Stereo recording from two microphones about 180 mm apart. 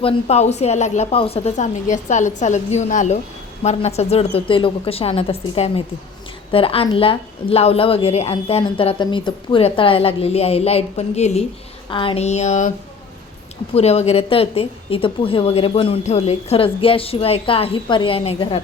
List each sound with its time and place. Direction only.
0.0 s a woman's voice: 35° left (ahead or behind)
13.7 s a woman's voice: 35° left (ahead or behind)